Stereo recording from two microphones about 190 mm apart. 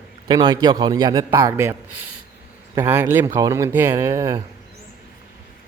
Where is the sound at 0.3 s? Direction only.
20° right (ahead or behind).